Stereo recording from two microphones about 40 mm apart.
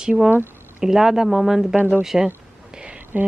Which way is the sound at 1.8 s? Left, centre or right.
Right.